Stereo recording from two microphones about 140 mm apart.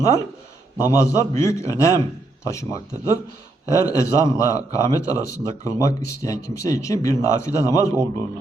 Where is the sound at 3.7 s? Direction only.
20° left (ahead or behind).